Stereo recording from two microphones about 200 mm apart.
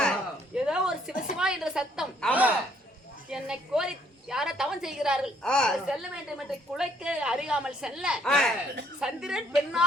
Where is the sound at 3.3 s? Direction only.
5° right (ahead or behind).